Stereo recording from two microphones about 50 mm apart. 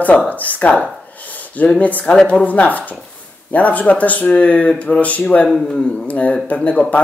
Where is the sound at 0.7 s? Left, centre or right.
Left.